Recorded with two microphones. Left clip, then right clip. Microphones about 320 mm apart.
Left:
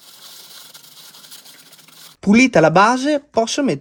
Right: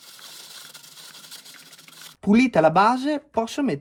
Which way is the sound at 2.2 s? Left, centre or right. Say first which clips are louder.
Left 5 dB; left.